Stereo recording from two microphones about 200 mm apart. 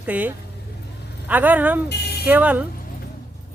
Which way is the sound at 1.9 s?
55° left (ahead or behind).